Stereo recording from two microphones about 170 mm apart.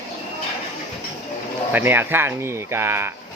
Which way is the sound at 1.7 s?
10° right (ahead or behind).